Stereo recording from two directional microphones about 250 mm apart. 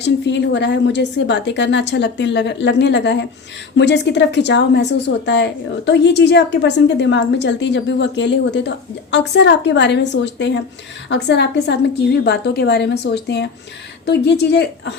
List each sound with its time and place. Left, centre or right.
0.0 s a woman's voice: left